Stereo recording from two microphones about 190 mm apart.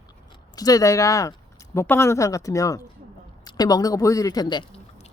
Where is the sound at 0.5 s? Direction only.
20° left (ahead or behind).